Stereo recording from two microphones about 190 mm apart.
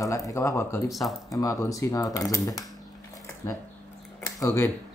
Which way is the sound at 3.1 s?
15° left (ahead or behind).